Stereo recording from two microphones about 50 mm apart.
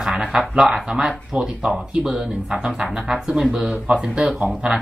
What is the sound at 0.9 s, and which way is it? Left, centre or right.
Speech, centre.